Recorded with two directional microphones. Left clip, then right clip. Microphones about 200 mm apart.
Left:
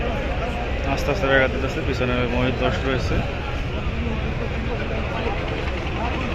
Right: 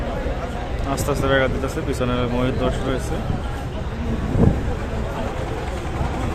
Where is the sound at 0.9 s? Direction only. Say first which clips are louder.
Even; 20° right (ahead or behind).